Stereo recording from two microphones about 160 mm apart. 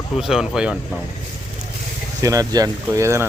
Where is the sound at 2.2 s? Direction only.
20° right (ahead or behind).